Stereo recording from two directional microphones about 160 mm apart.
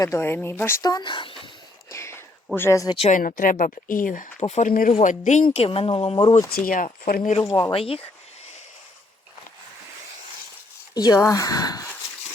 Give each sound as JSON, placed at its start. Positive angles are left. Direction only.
{"t": 0.0, "sound": "speech", "side_deg": 15}
{"t": 1.9, "sound": "a sound", "side_deg": 15}
{"t": 2.6, "sound": "speech", "side_deg": 20}
{"t": 2.9, "sound": "speech", "side_deg": 40}
{"t": 3.2, "sound": "speech", "side_deg": 60}
{"t": 4.7, "sound": "speech", "side_deg": 60}
{"t": 4.9, "sound": "speech", "side_deg": 50}
{"t": 5.5, "sound": "speech", "side_deg": 35}
{"t": 6.7, "sound": "speech", "side_deg": 55}
{"t": 7.4, "sound": "speech", "side_deg": 25}
{"t": 10.9, "sound": "speech", "side_deg": 25}